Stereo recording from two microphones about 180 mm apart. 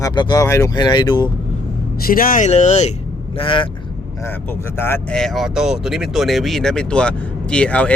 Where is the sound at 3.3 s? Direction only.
30° left (ahead or behind).